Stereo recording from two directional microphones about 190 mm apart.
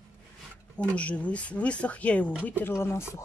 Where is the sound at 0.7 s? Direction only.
5° left (ahead or behind).